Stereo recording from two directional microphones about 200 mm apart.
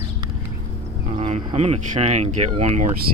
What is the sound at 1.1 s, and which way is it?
Speech, 30° right (ahead or behind).